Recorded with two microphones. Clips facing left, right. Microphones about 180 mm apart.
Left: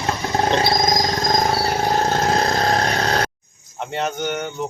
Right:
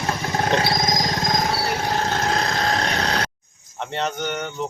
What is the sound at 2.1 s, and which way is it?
Vehicle, 40° left (ahead or behind).